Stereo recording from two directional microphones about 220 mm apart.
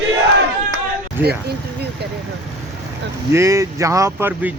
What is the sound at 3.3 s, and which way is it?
Speech, 15° right (ahead or behind).